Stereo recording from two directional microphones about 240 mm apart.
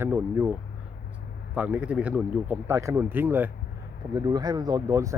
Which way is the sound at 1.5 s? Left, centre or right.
Centre.